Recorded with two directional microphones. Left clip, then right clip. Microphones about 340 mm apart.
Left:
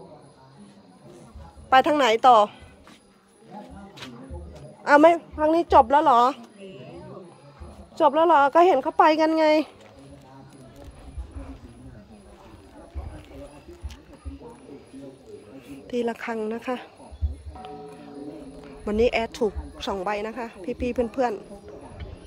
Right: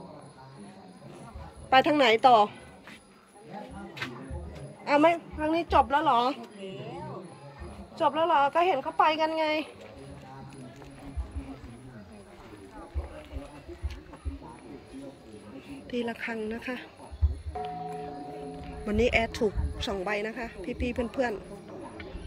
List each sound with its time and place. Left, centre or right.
1.7 s speech: centre
5.0 s speech: centre
8.0 s a woman's voice: centre
15.7 s a woman's voice: centre
18.9 s speech: centre